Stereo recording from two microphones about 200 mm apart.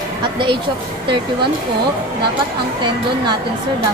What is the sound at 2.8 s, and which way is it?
Speech, 25° right (ahead or behind).